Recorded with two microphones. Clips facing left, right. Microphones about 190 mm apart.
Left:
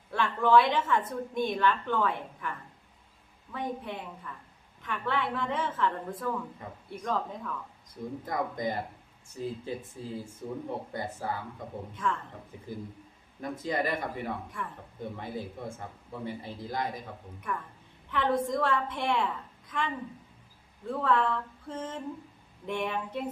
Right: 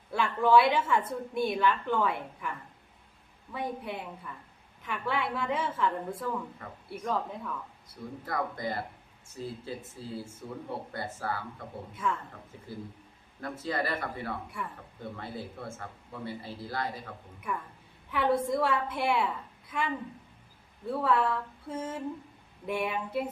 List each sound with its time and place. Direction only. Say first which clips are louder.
0.1 s a woman's voice: even; 10° right (ahead or behind)
8.2 s speech: left 1 dB; 15° left (ahead or behind)
11.9 s a woman's voice: even; 10° right (ahead or behind)
13.4 s speech: left 2 dB; 15° left (ahead or behind)
14.6 s a woman's voice: even; 10° right (ahead or behind)
15.0 s speech: left 2 dB; 15° left (ahead or behind)
17.5 s a woman's voice: even; 10° right (ahead or behind)